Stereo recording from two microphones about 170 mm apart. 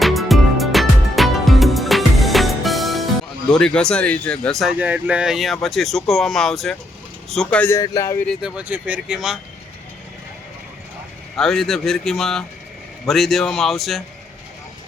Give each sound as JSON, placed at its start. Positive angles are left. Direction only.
{"t": 0.0, "sound": "music", "side_deg": 0}
{"t": 3.5, "sound": "speech", "side_deg": 5}
{"t": 7.8, "sound": "speech", "side_deg": 20}
{"t": 8.3, "sound": "speech", "side_deg": -5}
{"t": 11.3, "sound": "speech", "side_deg": 5}